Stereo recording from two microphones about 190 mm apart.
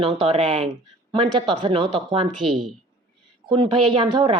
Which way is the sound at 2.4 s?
Centre (ahead or behind).